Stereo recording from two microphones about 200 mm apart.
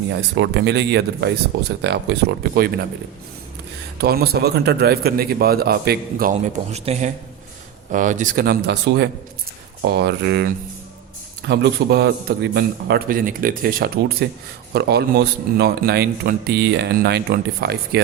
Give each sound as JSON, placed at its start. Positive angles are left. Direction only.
{"t": 0.1, "sound": "speech", "side_deg": -65}
{"t": 3.9, "sound": "speech", "side_deg": -50}
{"t": 6.7, "sound": "speech", "side_deg": -35}